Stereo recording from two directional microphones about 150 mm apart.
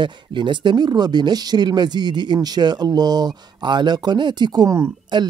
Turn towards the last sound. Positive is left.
turn(degrees=-30)  # may be behind; listen again after turning